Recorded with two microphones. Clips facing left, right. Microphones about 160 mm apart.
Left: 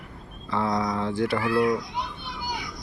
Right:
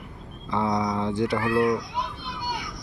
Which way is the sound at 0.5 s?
15° right (ahead or behind).